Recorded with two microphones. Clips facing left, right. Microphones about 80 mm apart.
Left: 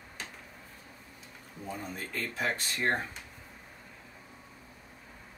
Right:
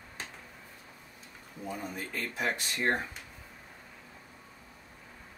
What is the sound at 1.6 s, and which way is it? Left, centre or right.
Speech, centre.